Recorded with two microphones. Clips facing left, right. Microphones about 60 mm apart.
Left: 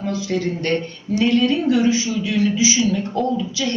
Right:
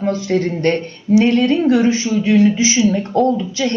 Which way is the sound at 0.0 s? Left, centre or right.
Right.